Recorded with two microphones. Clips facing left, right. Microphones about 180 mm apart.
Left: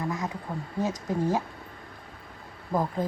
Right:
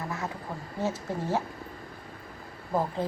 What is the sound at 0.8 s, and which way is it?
Speech, 15° left (ahead or behind).